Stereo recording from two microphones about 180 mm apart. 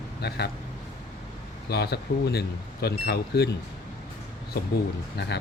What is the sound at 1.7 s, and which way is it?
Speech, 65° left (ahead or behind).